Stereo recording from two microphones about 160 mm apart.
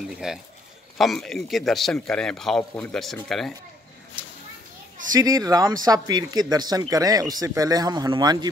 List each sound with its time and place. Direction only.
0.2 s speech: 5° right (ahead or behind)
4.2 s children playing: 10° right (ahead or behind)
5.1 s speech: 25° right (ahead or behind)